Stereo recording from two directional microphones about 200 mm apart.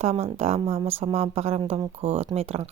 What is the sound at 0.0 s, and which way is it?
Speech, 30° right (ahead or behind).